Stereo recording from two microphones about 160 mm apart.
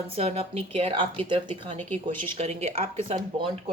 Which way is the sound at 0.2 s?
40° right (ahead or behind).